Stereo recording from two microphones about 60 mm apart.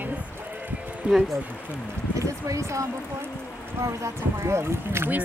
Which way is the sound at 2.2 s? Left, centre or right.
Right.